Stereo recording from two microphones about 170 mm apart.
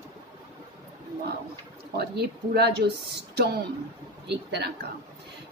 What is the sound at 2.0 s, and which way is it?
Speech, 70° right (ahead or behind).